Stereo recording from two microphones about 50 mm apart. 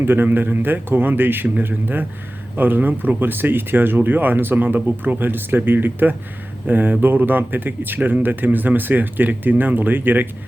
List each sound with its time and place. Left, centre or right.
0.0 s a man's voice: right